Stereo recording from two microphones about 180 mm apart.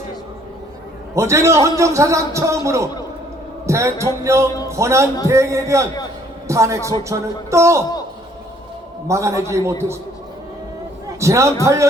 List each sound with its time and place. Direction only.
1.1 s a man's voice: 15° right (ahead or behind)
9.0 s a man's voice: 15° right (ahead or behind)
11.2 s a man's voice: 15° right (ahead or behind)